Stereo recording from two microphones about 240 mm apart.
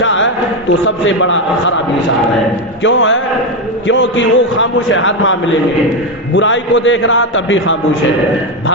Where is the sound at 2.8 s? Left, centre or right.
Left.